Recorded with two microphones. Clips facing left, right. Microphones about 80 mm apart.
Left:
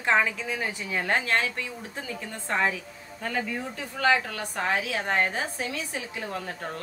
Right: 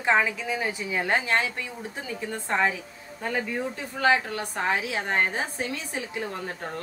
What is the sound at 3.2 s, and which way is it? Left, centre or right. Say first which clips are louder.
A woman's voice: right 2 dB; centre.